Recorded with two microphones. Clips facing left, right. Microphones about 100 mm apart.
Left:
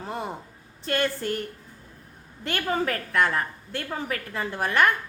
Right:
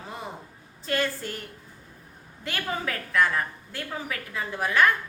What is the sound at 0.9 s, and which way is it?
Speech, 50° left (ahead or behind).